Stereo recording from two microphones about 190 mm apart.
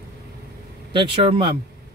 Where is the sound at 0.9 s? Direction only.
25° right (ahead or behind).